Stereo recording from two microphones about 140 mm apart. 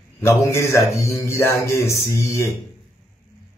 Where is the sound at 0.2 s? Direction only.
20° left (ahead or behind).